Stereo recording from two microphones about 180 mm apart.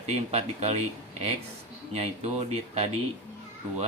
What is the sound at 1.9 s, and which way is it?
Speech, 35° right (ahead or behind).